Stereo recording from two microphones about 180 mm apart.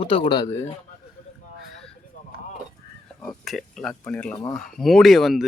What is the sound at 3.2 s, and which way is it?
Speech, centre (ahead or behind).